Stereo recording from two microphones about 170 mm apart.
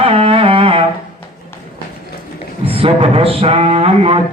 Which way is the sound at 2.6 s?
35° right (ahead or behind).